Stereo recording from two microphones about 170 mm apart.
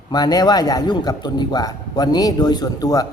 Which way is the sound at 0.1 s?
25° left (ahead or behind).